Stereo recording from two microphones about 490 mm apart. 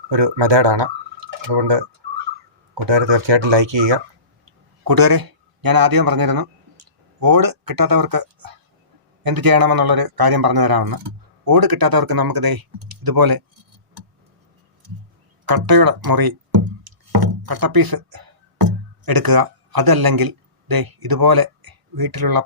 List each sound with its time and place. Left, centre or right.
0.1 s speech: right
2.8 s speech: right
4.8 s speech: right
15.4 s speech: right
16.8 s music: right